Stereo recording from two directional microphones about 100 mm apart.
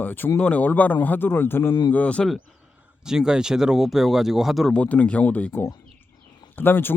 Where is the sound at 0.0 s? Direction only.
20° left (ahead or behind).